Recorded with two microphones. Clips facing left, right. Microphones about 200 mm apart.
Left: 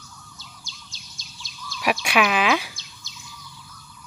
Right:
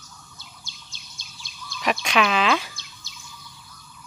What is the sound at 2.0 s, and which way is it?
Speech, 10° left (ahead or behind).